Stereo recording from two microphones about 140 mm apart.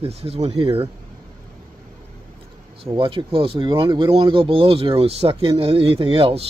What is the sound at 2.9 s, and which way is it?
Speech, 40° right (ahead or behind).